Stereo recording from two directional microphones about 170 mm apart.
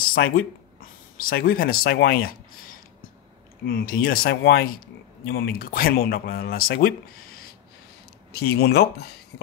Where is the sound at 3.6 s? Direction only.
60° left (ahead or behind).